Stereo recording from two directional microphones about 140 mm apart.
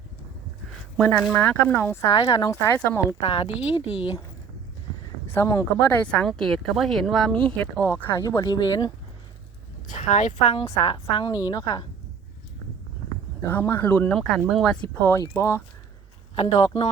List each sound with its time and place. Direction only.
0.7 s a sound: 5° left (ahead or behind)
1.3 s speech: 15° left (ahead or behind)
2.2 s speech: 25° left (ahead or behind)
2.7 s speech: 15° left (ahead or behind)
3.2 s speech: 45° left (ahead or behind)
5.3 s speech: 20° left (ahead or behind)
6.0 s speech: 5° left (ahead or behind); by 8.9 s 30° left (ahead or behind)
9.8 s a woman's voice: 65° left (ahead or behind); by 11.3 s 40° left (ahead or behind)
11.4 s speech: 30° left (ahead or behind)
13.4 s speech: 15° left (ahead or behind)
16.3 s a man's voice: 50° left (ahead or behind)